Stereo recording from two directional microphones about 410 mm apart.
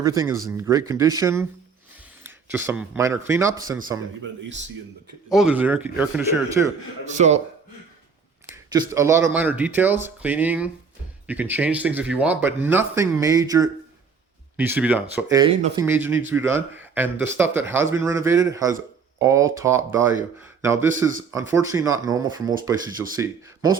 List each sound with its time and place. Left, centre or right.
0.0 s speech: centre
5.3 s speech: centre
7.1 s speech: centre
8.7 s speech: centre